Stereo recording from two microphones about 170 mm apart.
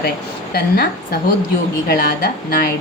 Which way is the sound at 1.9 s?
60° left (ahead or behind).